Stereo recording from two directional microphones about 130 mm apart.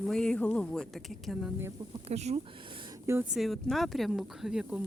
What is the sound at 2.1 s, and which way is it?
Speech, 55° right (ahead or behind).